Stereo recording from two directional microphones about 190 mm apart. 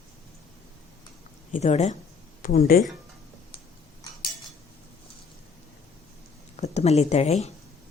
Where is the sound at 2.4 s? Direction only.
50° left (ahead or behind).